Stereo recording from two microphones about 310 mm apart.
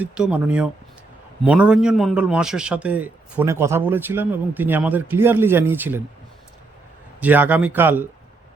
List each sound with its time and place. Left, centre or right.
0.0 s a man's voice: centre
7.2 s a man's voice: centre